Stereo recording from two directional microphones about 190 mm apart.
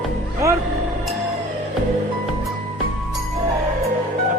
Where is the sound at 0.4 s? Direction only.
15° right (ahead or behind).